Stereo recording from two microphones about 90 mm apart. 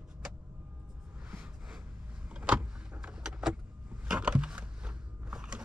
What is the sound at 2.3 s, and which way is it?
Vehicle, 10° right (ahead or behind).